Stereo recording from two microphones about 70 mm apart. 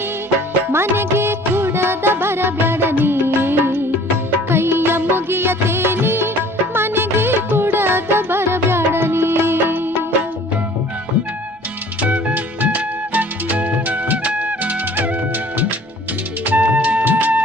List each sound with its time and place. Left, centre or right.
0.7 s music: right
11.9 s music: centre
16.4 s music: right